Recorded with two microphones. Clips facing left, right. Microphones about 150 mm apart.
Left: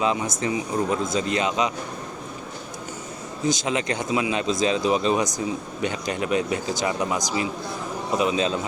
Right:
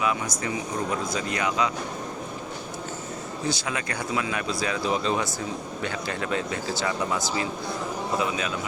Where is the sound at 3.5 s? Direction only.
20° left (ahead or behind).